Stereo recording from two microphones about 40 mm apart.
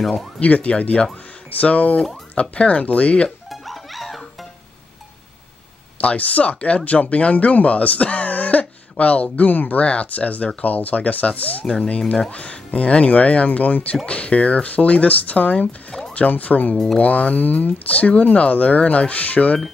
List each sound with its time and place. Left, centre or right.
0.4 s speech: left
3.4 s music: centre
5.9 s speech: left
9.8 s speech: left